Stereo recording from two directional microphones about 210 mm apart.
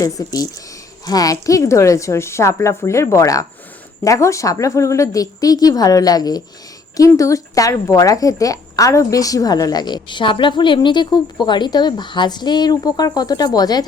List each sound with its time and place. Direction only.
0.0 s a woman's voice: 15° left (ahead or behind)